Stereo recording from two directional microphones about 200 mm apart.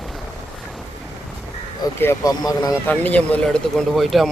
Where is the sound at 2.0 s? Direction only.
15° left (ahead or behind).